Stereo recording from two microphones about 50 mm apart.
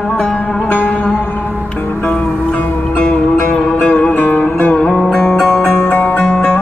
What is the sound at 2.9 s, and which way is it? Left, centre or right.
Music, left.